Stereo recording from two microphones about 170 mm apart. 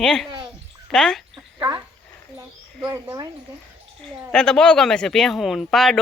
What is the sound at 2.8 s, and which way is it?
Speech, 20° right (ahead or behind).